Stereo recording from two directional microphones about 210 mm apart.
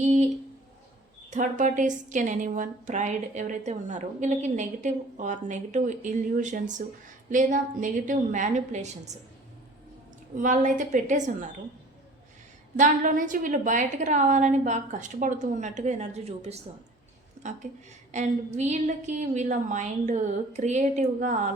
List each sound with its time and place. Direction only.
1.3 s a woman's voice: 35° right (ahead or behind)
10.3 s a woman's voice: 35° right (ahead or behind)
12.7 s a woman's voice: 40° right (ahead or behind)
17.6 s a woman's voice: 35° right (ahead or behind)